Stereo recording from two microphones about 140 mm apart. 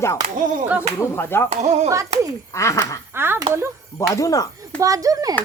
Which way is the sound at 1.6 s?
55° right (ahead or behind).